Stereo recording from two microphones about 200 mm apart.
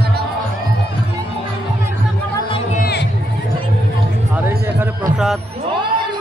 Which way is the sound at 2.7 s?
50° left (ahead or behind).